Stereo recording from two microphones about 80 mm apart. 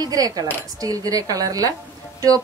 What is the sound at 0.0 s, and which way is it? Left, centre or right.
A woman's voice, right.